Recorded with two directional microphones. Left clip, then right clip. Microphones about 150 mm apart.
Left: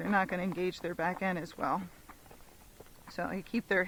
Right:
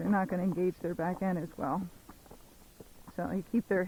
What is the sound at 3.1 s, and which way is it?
Speech, 30° left (ahead or behind).